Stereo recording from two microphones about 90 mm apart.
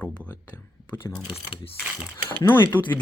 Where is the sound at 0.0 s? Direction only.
15° left (ahead or behind).